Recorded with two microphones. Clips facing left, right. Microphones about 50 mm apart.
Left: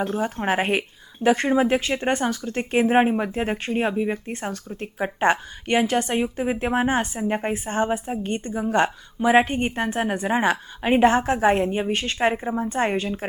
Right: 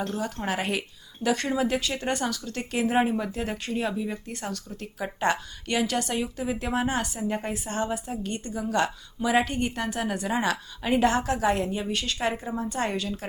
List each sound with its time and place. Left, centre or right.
0.1 s speech: left